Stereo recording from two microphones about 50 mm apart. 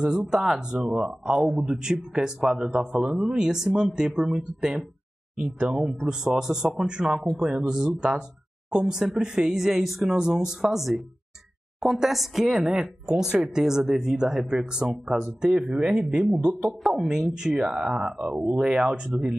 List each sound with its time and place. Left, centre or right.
0.0 s speech: centre
5.8 s speech: centre
10.1 s a woman's voice: centre
12.6 s speech: centre
16.6 s speech: centre